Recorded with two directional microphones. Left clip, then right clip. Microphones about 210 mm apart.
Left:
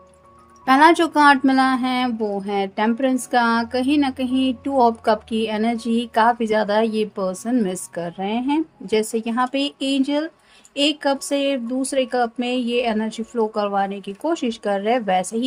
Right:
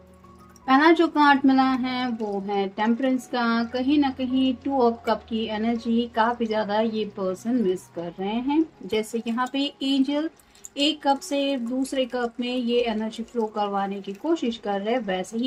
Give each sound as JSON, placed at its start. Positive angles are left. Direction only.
{"t": 0.6, "sound": "speech", "side_deg": 55}